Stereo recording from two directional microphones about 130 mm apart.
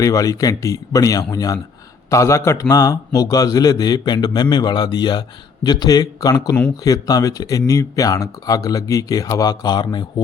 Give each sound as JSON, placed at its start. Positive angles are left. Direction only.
{"t": 0.0, "sound": "a man's voice", "side_deg": 25}